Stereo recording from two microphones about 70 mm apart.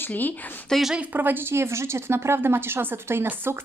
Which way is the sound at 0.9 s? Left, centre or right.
Right.